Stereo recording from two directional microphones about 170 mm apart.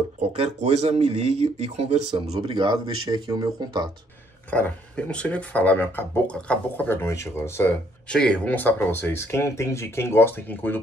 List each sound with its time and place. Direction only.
0.3 s speech: 40° right (ahead or behind); by 3.9 s 25° right (ahead or behind)
4.5 s speech: 10° left (ahead or behind)